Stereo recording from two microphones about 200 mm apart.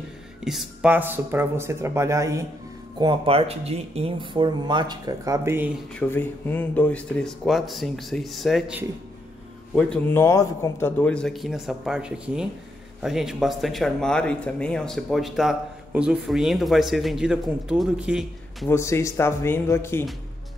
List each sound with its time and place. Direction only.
0.4 s speech: centre (ahead or behind)
3.0 s speech: 25° right (ahead or behind)
5.9 s speech: 10° left (ahead or behind)
9.8 s speech: 5° left (ahead or behind)
18.7 s speech: 15° left (ahead or behind)